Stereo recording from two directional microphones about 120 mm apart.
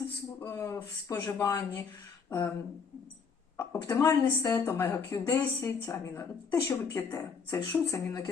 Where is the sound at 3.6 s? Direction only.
20° left (ahead or behind).